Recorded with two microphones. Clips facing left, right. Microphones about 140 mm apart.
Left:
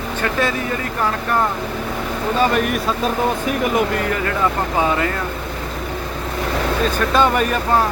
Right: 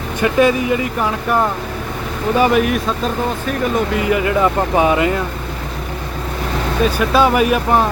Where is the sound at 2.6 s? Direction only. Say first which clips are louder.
Right 2 dB; centre (ahead or behind); by 5.1 s 15° right (ahead or behind).